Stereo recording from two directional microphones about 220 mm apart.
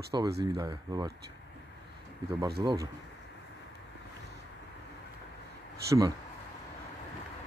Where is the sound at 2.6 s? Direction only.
15° right (ahead or behind).